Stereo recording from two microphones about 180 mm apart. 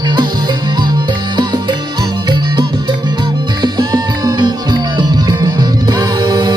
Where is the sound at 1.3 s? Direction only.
25° right (ahead or behind).